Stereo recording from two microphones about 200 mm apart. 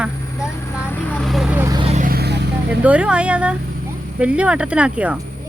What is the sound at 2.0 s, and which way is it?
Vehicle, 50° right (ahead or behind).